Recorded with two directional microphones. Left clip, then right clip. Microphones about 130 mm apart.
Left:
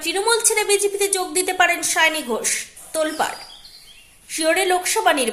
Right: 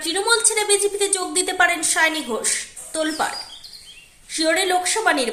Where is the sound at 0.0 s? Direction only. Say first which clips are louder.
Even; 15° left (ahead or behind).